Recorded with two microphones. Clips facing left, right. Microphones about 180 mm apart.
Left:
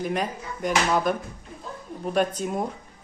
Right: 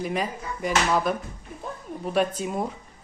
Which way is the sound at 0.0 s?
Centre (ahead or behind).